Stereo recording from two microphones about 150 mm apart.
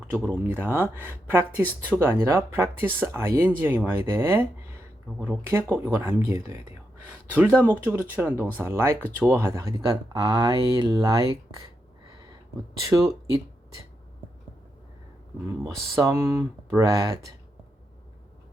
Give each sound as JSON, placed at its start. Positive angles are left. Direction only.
{"t": 0.1, "sound": "speech", "side_deg": -10}
{"t": 12.8, "sound": "speech", "side_deg": -20}
{"t": 16.0, "sound": "speech", "side_deg": -20}